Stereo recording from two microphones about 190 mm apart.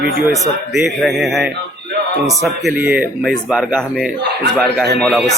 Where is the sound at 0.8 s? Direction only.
Centre (ahead or behind).